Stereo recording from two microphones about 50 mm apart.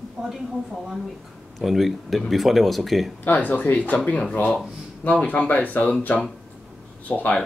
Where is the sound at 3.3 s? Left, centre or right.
Left.